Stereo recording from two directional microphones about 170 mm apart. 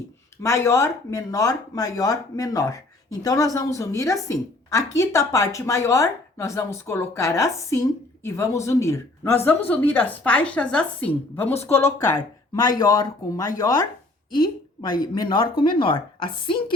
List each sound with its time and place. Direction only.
0.4 s a woman's voice: 15° left (ahead or behind)